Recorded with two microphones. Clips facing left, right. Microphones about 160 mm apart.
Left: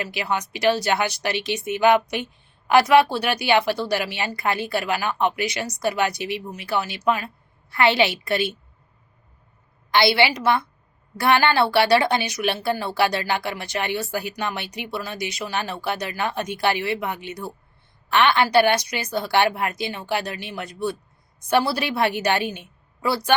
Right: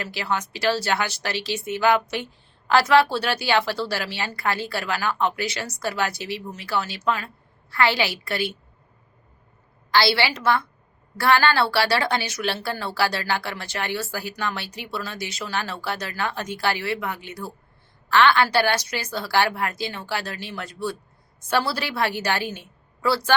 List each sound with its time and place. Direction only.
0.0 s a woman's voice: 15° left (ahead or behind)
9.9 s a woman's voice: 20° left (ahead or behind)